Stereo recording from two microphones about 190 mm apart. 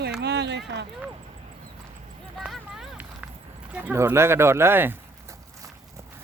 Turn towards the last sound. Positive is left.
turn(degrees=-10)  # may be behind; listen again after turning